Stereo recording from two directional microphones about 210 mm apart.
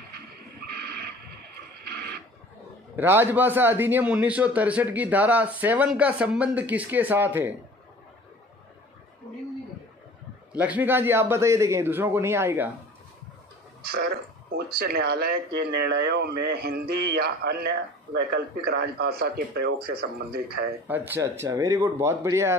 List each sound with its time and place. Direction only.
3.0 s a man's voice: 10° right (ahead or behind)
10.6 s a man's voice: 10° right (ahead or behind)
13.8 s speech: 45° right (ahead or behind)
21.1 s a man's voice: 15° right (ahead or behind)